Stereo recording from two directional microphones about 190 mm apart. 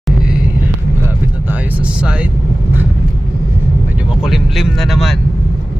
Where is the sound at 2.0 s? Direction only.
5° right (ahead or behind).